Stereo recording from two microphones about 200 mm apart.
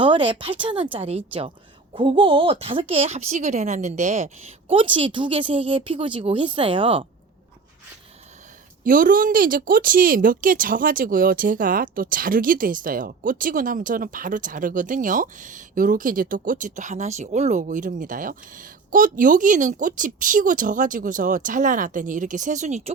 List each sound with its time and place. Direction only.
0.0 s a woman's voice: 25° right (ahead or behind)
4.7 s speech: 25° right (ahead or behind)
8.8 s a woman's voice: 45° right (ahead or behind)